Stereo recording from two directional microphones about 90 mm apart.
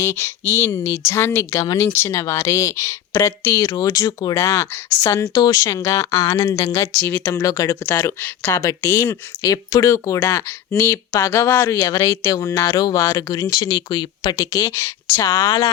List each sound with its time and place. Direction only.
0.0 s speech: 30° left (ahead or behind)
1.5 s speech: 45° left (ahead or behind)
1.8 s speech: 25° left (ahead or behind); by 4.4 s 45° left (ahead or behind)
4.4 s speech: 30° left (ahead or behind)
7.4 s speech: 40° left (ahead or behind)
7.9 s speech: 25° left (ahead or behind)
11.8 s speech: 35° left (ahead or behind); by 14.4 s 55° left (ahead or behind)
14.5 s speech: 35° left (ahead or behind)
15.4 s speech: 60° left (ahead or behind)